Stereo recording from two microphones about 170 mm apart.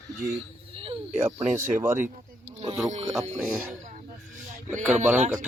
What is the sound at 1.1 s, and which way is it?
Speech, 15° right (ahead or behind).